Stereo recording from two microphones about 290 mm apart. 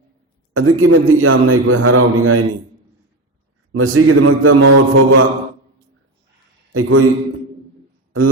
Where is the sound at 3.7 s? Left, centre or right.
Right.